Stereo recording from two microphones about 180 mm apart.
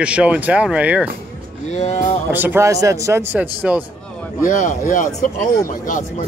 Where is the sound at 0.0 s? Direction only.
5° right (ahead or behind).